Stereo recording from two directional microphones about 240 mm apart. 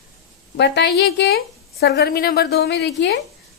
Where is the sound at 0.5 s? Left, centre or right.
Left.